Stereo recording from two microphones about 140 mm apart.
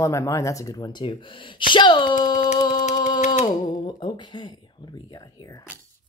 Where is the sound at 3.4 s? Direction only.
35° left (ahead or behind).